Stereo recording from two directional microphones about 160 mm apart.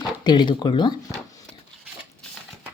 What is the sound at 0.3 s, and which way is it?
Speech, 25° left (ahead or behind).